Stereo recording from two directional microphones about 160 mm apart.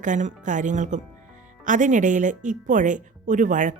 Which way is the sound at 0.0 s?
50° right (ahead or behind).